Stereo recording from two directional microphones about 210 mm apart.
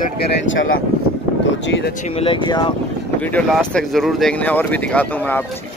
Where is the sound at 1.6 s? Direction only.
55° left (ahead or behind).